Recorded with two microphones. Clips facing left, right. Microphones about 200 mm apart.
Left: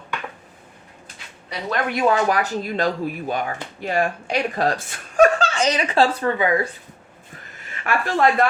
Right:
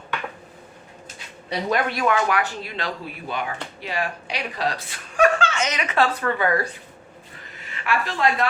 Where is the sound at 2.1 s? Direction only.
35° left (ahead or behind).